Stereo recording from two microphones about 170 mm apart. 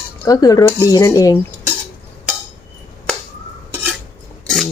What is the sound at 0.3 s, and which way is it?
Speech, 20° left (ahead or behind).